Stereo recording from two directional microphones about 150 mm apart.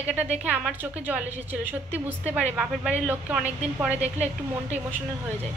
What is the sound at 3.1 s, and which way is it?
Speech, 10° right (ahead or behind).